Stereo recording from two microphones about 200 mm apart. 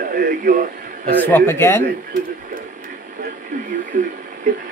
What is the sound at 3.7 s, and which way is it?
Speech, 40° right (ahead or behind).